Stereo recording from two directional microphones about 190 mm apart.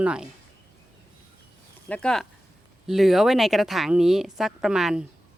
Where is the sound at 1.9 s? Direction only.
5° left (ahead or behind).